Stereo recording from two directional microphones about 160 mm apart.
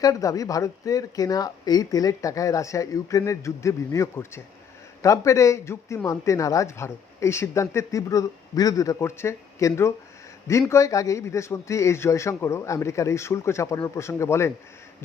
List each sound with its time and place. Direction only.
0.0 s speech: 20° left (ahead or behind)